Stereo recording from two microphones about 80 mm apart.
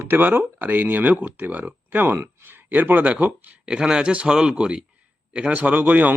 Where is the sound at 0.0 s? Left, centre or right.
Right.